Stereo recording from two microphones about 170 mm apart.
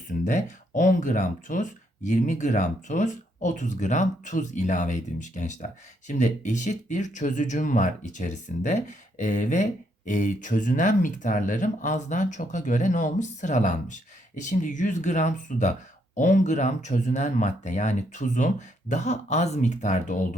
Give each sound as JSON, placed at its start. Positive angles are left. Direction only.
{"t": 0.3, "sound": "speech", "side_deg": 45}